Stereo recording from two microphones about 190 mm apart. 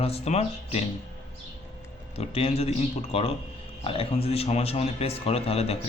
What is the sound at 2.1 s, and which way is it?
Speech, 30° left (ahead or behind).